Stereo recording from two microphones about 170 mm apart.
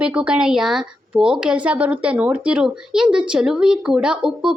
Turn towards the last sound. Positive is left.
turn(degrees=-5)  # may be behind; listen again after turning